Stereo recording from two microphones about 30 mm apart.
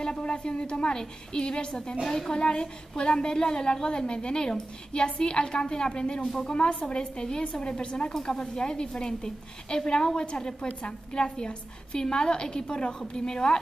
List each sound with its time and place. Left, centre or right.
0.2 s a woman's voice: left
7.2 s a woman's voice: left
10.7 s a woman's voice: left
11.1 s a woman's voice: left